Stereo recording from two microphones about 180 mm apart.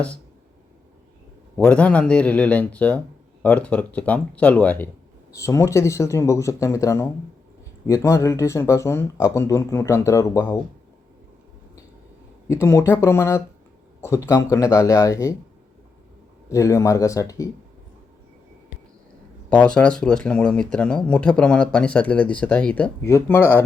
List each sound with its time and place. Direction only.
1.5 s speech: 5° left (ahead or behind)
12.5 s speech: 15° left (ahead or behind)
16.5 s speech: 15° left (ahead or behind)
19.5 s speech: 5° left (ahead or behind)